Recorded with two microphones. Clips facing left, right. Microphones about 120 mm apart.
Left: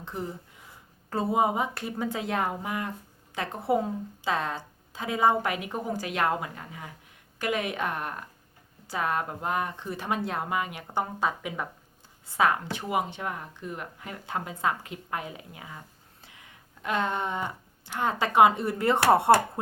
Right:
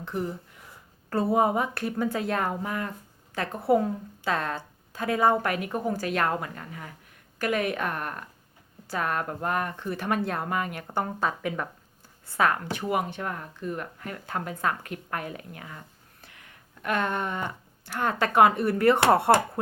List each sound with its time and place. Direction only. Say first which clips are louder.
1.1 s a woman's voice: right 2 dB; 20° left (ahead or behind)
16.3 s a sound: right 1 dB; 20° left (ahead or behind)
17.8 s a woman's voice: right 1 dB; 20° left (ahead or behind)